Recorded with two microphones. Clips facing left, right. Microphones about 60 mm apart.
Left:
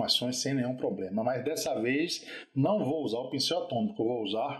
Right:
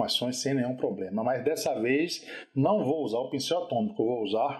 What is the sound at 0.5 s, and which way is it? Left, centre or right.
Speech, centre.